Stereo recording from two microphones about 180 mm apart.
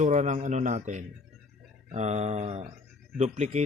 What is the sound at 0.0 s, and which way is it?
Speech, 40° right (ahead or behind).